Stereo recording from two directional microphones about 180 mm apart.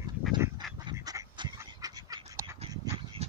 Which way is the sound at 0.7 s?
20° right (ahead or behind).